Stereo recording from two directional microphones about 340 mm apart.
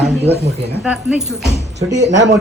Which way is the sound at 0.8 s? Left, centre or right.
Centre.